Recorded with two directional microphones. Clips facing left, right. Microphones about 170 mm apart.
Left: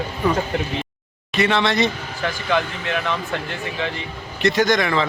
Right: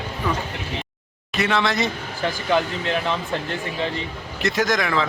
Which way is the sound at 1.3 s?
Centre (ahead or behind).